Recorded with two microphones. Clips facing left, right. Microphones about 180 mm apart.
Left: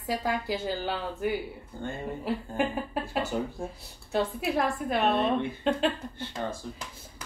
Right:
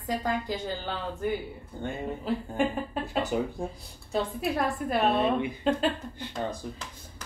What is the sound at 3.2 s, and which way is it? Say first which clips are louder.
Speech: right 3 dB; 20° right (ahead or behind).